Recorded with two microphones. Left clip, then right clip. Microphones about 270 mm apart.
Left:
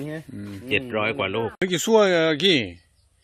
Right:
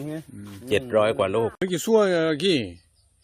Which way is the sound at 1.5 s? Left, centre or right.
Centre.